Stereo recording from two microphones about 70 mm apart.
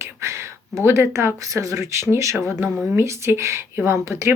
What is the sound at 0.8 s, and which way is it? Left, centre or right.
Speech, right.